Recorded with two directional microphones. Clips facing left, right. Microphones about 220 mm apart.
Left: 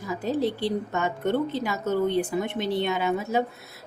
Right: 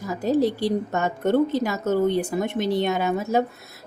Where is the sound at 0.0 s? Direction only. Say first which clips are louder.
Right 5 dB; 40° right (ahead or behind).